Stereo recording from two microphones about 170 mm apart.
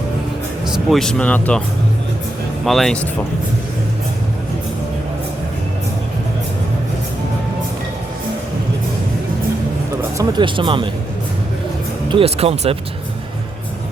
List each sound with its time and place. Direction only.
0.7 s speech: centre (ahead or behind)
2.6 s speech: centre (ahead or behind)
10.2 s speech: 25° right (ahead or behind)
12.0 s speech: 35° right (ahead or behind)